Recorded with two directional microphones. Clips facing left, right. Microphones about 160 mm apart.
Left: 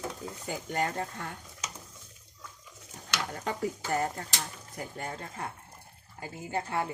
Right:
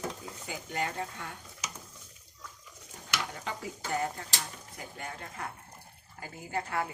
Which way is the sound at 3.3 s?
45° left (ahead or behind).